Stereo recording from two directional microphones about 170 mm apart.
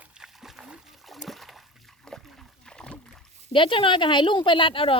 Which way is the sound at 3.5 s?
30° left (ahead or behind).